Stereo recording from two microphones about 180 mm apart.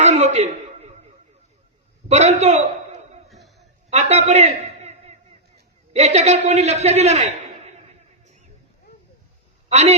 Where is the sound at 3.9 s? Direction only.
35° right (ahead or behind).